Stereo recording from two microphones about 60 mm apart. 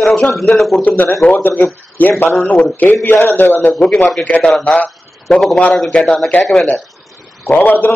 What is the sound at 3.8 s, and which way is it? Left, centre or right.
Speech, centre.